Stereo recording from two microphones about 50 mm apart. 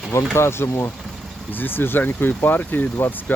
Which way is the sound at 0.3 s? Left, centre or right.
Left.